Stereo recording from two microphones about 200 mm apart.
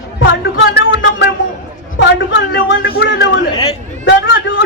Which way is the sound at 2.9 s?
55° left (ahead or behind).